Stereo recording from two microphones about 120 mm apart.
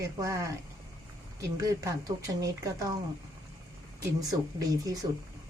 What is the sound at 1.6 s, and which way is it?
Speech, 30° right (ahead or behind).